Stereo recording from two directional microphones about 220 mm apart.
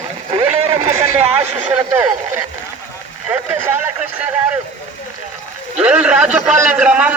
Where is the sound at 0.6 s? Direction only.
25° right (ahead or behind).